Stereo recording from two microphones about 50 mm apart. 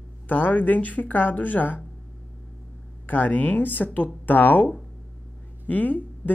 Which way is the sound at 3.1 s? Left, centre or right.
Left.